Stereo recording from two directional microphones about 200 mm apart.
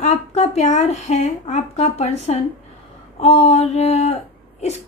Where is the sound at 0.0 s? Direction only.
35° left (ahead or behind).